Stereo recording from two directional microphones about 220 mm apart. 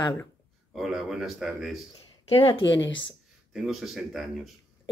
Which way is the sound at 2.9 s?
20° left (ahead or behind).